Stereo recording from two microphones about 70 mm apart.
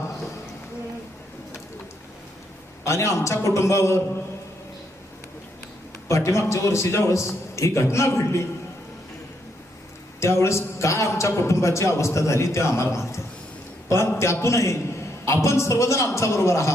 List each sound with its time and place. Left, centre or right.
2.8 s a man's voice: left
6.1 s a man's voice: left
10.2 s a man's voice: left